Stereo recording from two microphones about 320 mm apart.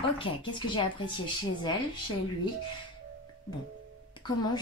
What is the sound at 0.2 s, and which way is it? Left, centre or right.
A woman's voice, centre.